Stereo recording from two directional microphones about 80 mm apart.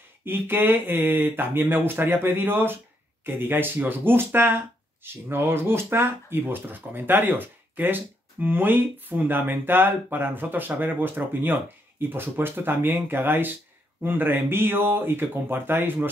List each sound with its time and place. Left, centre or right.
0.2 s speech: right